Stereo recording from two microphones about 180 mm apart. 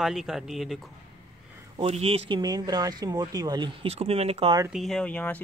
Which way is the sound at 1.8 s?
35° right (ahead or behind).